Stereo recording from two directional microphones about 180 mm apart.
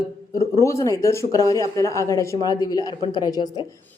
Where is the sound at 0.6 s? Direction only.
15° left (ahead or behind).